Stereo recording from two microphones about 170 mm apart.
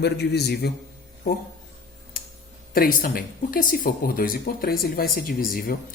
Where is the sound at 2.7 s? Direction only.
60° left (ahead or behind).